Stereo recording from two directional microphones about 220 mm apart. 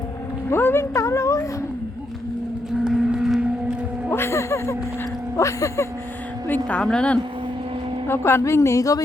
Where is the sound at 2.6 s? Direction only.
Centre (ahead or behind).